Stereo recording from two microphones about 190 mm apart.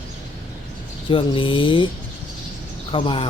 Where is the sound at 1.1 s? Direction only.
25° left (ahead or behind).